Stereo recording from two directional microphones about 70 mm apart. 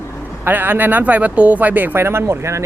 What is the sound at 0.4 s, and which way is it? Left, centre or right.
Speech, right.